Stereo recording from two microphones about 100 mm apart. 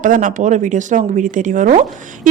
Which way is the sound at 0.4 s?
90° right.